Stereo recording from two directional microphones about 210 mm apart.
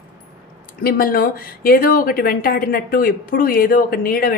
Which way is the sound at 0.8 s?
45° left (ahead or behind).